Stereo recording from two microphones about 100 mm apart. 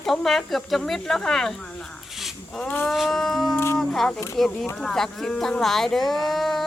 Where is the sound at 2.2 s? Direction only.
5° left (ahead or behind).